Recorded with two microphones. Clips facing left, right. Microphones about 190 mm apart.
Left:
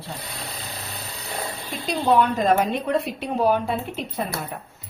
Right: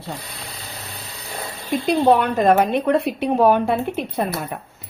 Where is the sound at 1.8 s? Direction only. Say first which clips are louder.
Right 3 dB; 60° right (ahead or behind).